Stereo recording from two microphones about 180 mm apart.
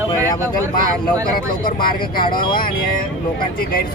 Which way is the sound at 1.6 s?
55° left (ahead or behind).